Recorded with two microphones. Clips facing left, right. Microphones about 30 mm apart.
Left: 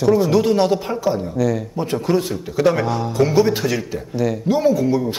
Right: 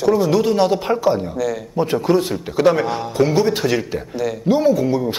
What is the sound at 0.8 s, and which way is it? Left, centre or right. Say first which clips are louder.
Speech: right 3 dB; centre.